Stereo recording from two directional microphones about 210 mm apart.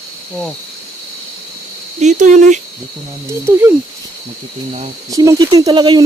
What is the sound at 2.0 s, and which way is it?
Speech, 35° right (ahead or behind).